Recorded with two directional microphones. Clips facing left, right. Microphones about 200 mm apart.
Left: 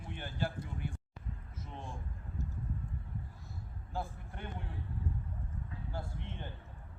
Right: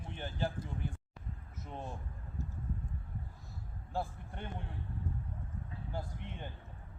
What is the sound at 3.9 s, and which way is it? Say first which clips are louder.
Speech: right 2 dB; 30° right (ahead or behind).